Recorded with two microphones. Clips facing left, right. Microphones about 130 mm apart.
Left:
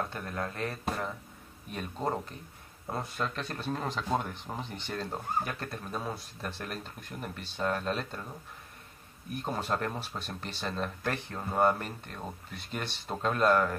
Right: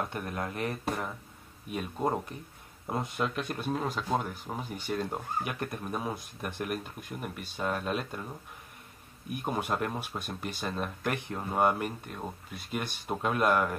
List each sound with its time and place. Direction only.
0.1 s speech: 20° right (ahead or behind)
9.3 s speech: 15° right (ahead or behind)